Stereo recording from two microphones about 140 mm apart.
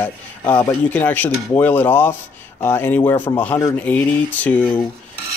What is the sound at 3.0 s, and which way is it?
Speech, 20° left (ahead or behind).